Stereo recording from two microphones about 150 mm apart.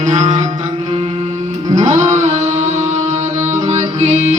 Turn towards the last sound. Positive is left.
turn(degrees=-50)  # may be behind; listen again after turning